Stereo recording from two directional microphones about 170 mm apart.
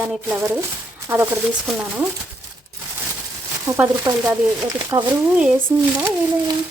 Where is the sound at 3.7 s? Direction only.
15° right (ahead or behind).